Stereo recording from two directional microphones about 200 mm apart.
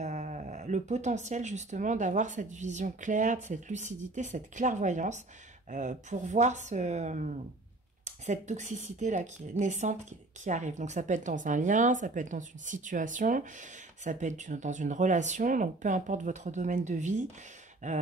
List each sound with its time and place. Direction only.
0.0 s speech: 35° right (ahead or behind)